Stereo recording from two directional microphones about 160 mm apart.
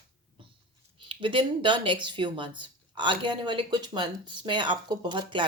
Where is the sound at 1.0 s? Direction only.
30° right (ahead or behind).